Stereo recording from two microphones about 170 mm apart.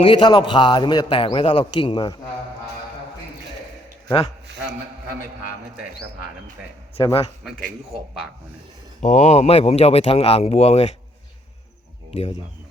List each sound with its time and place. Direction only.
0.0 s a man's voice: 30° left (ahead or behind)
6.9 s speech: 35° left (ahead or behind)
9.0 s speech: 45° left (ahead or behind)